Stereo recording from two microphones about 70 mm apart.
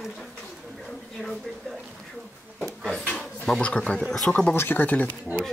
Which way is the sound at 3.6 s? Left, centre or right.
Centre.